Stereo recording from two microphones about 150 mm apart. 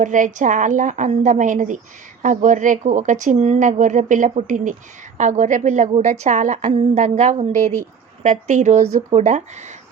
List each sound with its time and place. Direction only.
0.0 s a woman's voice: 55° right (ahead or behind)